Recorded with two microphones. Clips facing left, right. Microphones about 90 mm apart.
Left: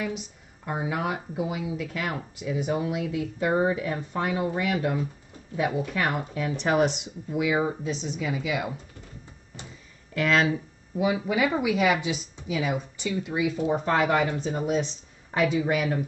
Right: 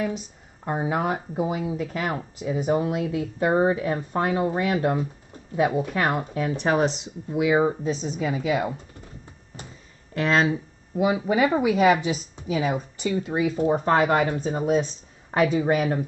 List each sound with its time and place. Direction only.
0.7 s speech: 35° right (ahead or behind)
10.1 s speech: 30° right (ahead or behind)